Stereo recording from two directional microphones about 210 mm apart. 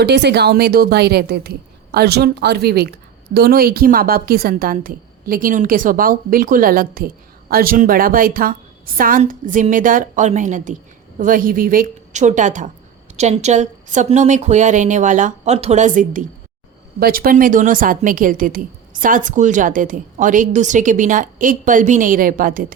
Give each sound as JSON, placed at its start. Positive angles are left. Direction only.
{"t": 0.0, "sound": "a woman's voice", "side_deg": -55}